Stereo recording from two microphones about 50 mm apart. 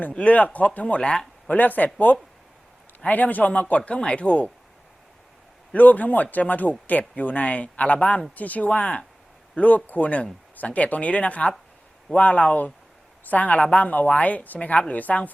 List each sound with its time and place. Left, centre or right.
0.0 s a man's voice: left
1.5 s a woman's voice: left
5.7 s a woman's voice: left